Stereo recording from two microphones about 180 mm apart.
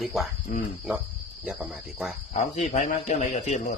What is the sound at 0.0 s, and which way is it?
Speech, centre (ahead or behind).